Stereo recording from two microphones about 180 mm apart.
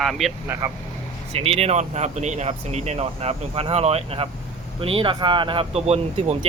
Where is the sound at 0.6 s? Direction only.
15° right (ahead or behind).